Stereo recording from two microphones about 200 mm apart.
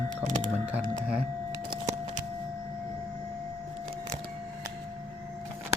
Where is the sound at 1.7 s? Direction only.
35° right (ahead or behind).